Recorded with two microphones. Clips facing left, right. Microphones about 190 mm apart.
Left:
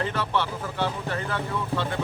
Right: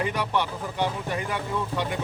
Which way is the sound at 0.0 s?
15° right (ahead or behind).